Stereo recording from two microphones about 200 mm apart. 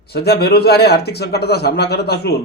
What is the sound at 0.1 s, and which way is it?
Speech, 55° left (ahead or behind).